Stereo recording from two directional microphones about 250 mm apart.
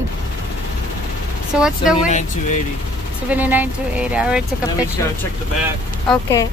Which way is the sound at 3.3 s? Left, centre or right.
Centre.